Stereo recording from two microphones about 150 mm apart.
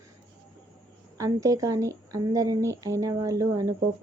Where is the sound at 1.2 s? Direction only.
20° right (ahead or behind).